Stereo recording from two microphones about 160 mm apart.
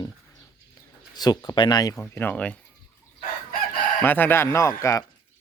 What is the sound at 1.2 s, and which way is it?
Speech, 25° left (ahead or behind).